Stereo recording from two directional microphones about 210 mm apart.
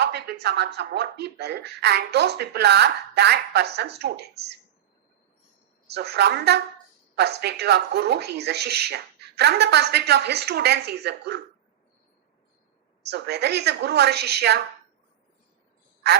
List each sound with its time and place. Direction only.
0.0 s speech: 50° right (ahead or behind)
5.9 s speech: 50° right (ahead or behind)
13.1 s speech: 50° right (ahead or behind)